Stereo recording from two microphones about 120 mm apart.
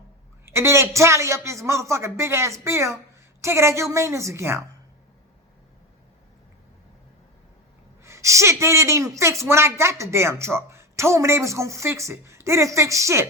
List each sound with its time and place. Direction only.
0.4 s a woman's voice: 20° right (ahead or behind)
8.0 s a woman's voice: 25° right (ahead or behind)